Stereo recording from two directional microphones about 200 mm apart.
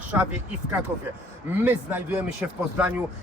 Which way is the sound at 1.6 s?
10° right (ahead or behind).